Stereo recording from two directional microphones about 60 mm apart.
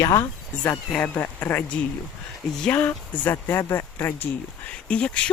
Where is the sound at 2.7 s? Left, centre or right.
Left.